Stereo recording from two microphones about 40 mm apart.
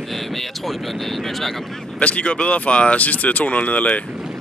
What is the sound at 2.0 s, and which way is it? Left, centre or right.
Speech, left.